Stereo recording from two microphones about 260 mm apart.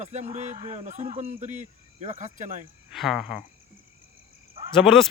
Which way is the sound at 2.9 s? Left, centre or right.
Centre.